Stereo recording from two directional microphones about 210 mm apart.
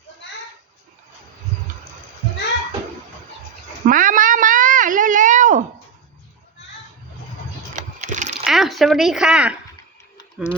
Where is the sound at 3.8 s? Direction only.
40° right (ahead or behind).